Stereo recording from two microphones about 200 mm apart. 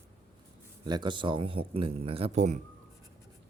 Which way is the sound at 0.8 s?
20° right (ahead or behind).